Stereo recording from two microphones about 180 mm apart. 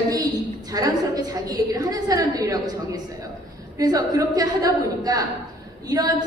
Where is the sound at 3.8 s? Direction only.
20° right (ahead or behind).